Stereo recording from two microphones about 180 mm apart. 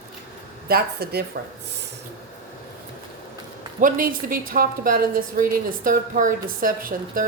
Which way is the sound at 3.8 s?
50° right (ahead or behind).